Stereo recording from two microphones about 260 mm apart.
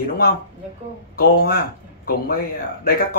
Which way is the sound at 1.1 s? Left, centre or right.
Left.